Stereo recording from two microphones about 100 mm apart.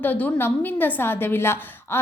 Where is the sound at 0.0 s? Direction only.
15° left (ahead or behind).